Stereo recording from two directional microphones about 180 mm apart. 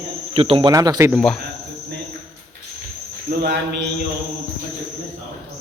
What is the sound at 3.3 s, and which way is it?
Speech, 60° right (ahead or behind).